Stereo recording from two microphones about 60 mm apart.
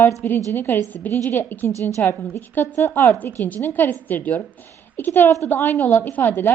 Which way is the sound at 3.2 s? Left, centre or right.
Left.